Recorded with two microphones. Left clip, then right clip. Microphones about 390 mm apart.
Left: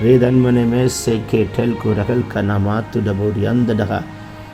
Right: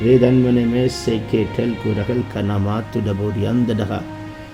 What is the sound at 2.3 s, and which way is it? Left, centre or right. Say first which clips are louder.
Speech: left 3 dB; centre.